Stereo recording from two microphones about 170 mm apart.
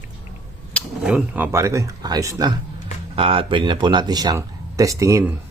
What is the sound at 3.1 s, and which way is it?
Speech, 30° right (ahead or behind).